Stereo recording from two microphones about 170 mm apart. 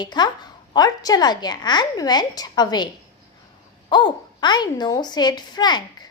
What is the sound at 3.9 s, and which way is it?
A woman's voice, 25° left (ahead or behind).